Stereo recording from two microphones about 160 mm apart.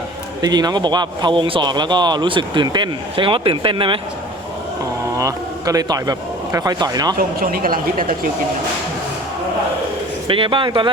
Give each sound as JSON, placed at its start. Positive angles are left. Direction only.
{"t": 0.4, "sound": "speech", "side_deg": -25}
{"t": 5.1, "sound": "a man's voice", "side_deg": -20}
{"t": 7.2, "sound": "speech", "side_deg": -65}
{"t": 10.2, "sound": "speech", "side_deg": -35}